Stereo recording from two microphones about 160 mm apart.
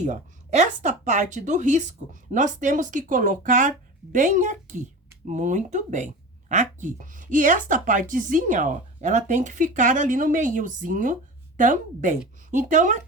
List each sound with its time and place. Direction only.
0.0 s a woman's voice: 45° right (ahead or behind)